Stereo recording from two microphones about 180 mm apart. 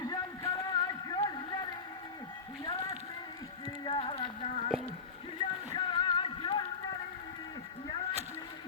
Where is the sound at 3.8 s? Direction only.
25° left (ahead or behind).